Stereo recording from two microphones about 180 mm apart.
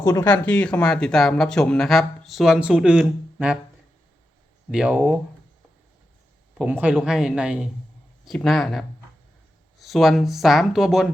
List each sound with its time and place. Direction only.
0.0 s speech: 15° left (ahead or behind); by 3.6 s 5° right (ahead or behind)
4.7 s speech: 5° right (ahead or behind)
6.6 s speech: 5° right (ahead or behind)